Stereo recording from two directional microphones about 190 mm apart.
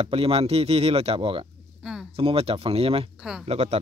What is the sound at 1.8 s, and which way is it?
Speech, 5° right (ahead or behind).